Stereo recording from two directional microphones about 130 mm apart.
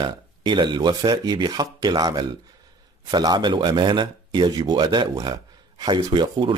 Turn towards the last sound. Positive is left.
turn(degrees=-35)  # may be behind; listen again after turning